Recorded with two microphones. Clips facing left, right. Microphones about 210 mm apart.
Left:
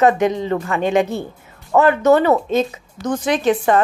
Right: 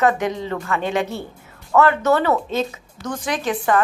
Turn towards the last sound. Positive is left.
turn(degrees=25)  # may be behind; listen again after turning